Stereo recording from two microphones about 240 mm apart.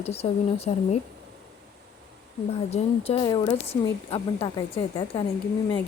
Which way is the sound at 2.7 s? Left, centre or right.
Left.